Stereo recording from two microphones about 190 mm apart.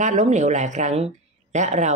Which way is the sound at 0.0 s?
40° right (ahead or behind).